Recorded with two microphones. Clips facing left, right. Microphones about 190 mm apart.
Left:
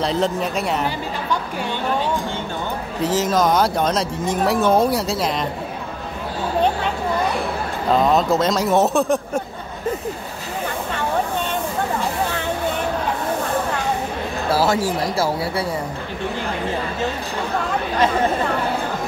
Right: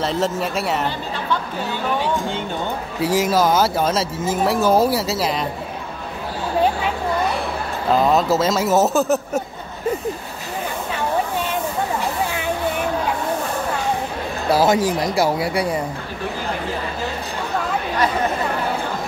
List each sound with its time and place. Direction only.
0.0 s speech: centre (ahead or behind)
3.0 s speech: 10° right (ahead or behind)
7.9 s speech: centre (ahead or behind)
14.5 s speech: 15° right (ahead or behind)